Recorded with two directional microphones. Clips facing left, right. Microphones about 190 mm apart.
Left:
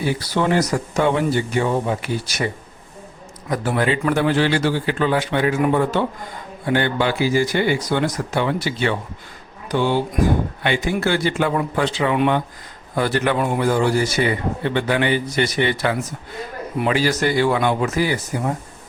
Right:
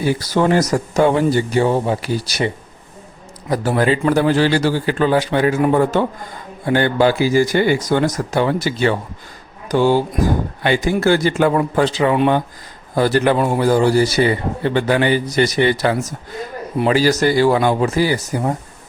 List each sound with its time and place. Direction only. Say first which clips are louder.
0.2 s a man's voice: right 3 dB; 40° right (ahead or behind)
3.5 s a man's voice: right 4 dB; 40° right (ahead or behind)